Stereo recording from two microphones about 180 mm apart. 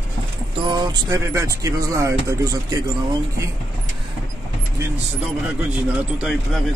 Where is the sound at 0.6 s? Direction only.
25° right (ahead or behind).